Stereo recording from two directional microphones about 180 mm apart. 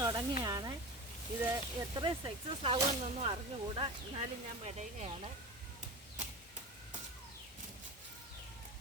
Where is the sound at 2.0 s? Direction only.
30° right (ahead or behind).